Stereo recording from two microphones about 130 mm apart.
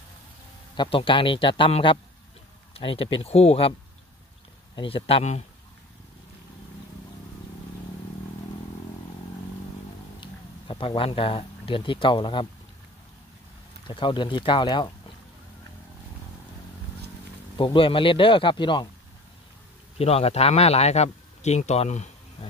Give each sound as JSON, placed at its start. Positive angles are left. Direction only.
{"t": 0.7, "sound": "speech", "side_deg": 40}
{"t": 4.7, "sound": "speech", "side_deg": 45}
{"t": 10.2, "sound": "speech", "side_deg": 40}
{"t": 13.8, "sound": "speech", "side_deg": 40}
{"t": 17.6, "sound": "speech", "side_deg": 40}
{"t": 20.0, "sound": "speech", "side_deg": 50}